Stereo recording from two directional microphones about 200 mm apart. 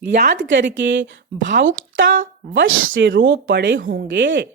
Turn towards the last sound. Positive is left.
turn(degrees=-65)  # may be behind; listen again after turning